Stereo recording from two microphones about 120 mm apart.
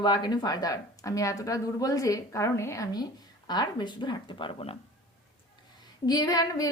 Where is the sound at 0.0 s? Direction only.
35° left (ahead or behind).